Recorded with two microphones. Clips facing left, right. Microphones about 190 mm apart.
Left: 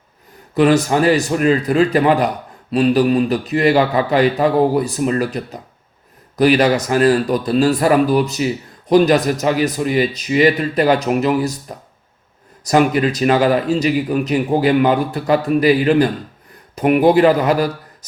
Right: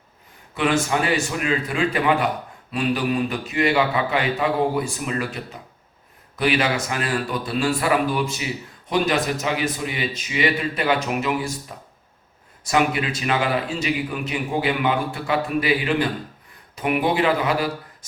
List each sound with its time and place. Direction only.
0.5 s a man's voice: 40° left (ahead or behind)
12.6 s a man's voice: 40° left (ahead or behind)